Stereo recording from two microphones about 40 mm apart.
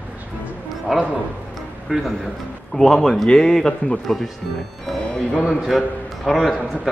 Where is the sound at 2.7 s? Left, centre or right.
Centre.